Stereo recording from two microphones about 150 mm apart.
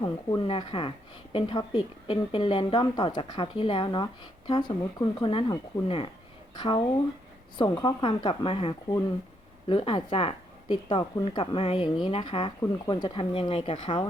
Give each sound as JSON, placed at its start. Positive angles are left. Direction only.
{"t": 0.4, "sound": "a woman's voice", "side_deg": 35}